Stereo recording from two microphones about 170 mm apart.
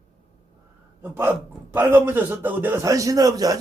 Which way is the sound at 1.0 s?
10° right (ahead or behind).